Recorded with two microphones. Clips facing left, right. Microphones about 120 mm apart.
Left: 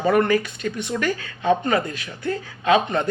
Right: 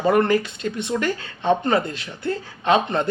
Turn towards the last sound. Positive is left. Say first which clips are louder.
# even
turn(degrees=-25)  # may be behind; listen again after turning